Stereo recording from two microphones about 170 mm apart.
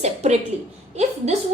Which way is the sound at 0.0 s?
40° right (ahead or behind).